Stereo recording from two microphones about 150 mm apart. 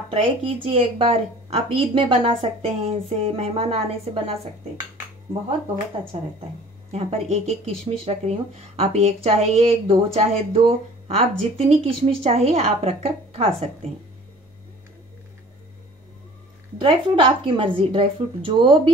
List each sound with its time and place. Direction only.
0.1 s speech: 35° right (ahead or behind)
6.1 s a woman's voice: 45° right (ahead or behind)
16.8 s speech: 35° right (ahead or behind)